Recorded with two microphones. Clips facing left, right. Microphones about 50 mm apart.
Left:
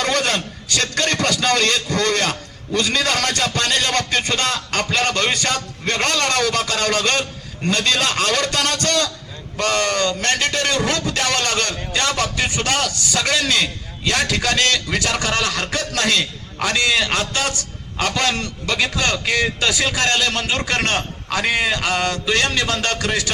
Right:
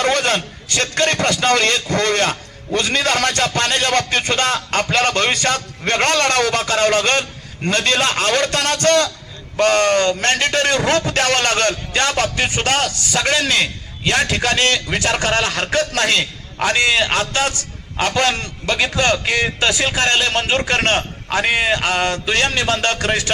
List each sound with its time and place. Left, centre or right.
0.0 s a man's voice: right